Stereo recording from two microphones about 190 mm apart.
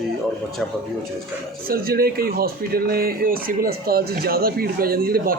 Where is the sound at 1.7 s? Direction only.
55° right (ahead or behind).